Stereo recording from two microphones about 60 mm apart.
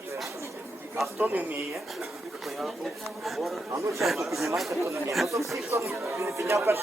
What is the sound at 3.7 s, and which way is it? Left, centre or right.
Speech, right.